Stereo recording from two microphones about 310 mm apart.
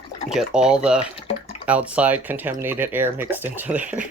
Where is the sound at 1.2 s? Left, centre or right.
Centre.